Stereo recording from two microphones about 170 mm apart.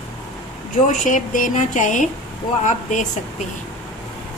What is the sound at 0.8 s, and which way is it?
Speech, 45° left (ahead or behind).